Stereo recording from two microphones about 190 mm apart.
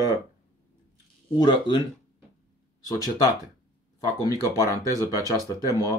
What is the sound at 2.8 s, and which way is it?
Speech, 20° left (ahead or behind).